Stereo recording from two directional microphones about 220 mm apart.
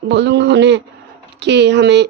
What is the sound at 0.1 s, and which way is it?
A woman's voice, 55° right (ahead or behind).